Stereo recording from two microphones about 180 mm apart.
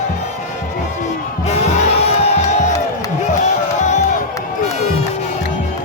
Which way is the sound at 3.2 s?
40° left (ahead or behind).